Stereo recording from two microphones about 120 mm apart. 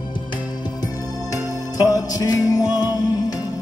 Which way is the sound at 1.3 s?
30° left (ahead or behind).